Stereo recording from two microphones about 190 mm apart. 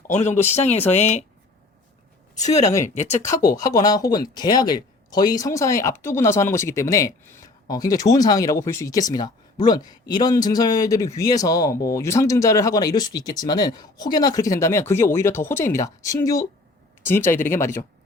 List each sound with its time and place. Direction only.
0.1 s speech: 35° left (ahead or behind)
2.8 s speech: 40° left (ahead or behind)
3.5 s speech: 20° left (ahead or behind)